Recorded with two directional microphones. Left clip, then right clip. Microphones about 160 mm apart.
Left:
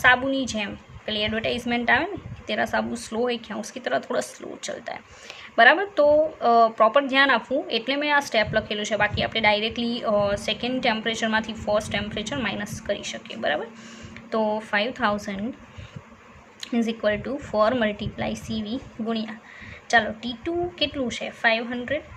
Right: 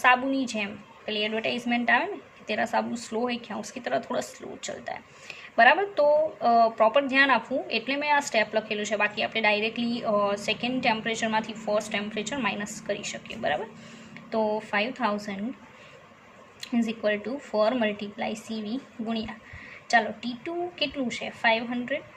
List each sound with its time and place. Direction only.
0.0 s a woman's voice: 15° left (ahead or behind)
16.6 s speech: 20° left (ahead or behind)